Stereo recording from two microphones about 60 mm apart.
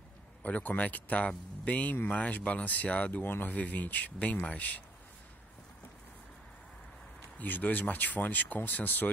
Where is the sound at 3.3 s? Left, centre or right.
Left.